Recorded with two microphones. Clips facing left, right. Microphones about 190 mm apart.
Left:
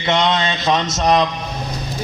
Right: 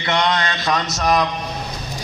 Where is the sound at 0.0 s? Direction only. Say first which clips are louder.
Left 2 dB; 20° left (ahead or behind).